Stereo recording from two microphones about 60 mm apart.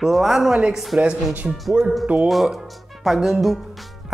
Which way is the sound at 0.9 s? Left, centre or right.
Right.